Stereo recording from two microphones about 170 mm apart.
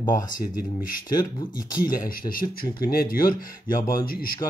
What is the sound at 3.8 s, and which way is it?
Speech, 25° left (ahead or behind).